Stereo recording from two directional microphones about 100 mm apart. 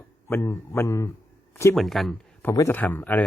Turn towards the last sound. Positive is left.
turn(degrees=15)  # may be behind; listen again after turning